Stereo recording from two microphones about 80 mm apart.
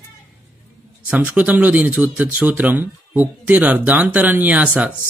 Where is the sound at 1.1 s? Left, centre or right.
Centre.